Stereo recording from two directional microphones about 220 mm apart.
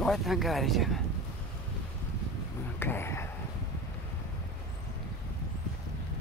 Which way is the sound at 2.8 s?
10° left (ahead or behind).